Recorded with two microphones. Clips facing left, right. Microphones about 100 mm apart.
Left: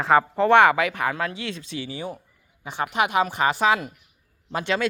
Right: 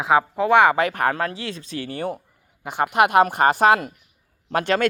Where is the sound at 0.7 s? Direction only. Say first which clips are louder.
Right 3 dB; 45° right (ahead or behind).